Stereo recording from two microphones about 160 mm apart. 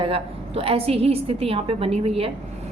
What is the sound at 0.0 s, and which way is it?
A woman's voice, 35° right (ahead or behind).